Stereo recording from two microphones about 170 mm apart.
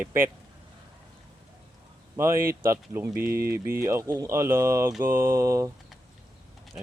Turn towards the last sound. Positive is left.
turn(degrees=-15)  # may be behind; listen again after turning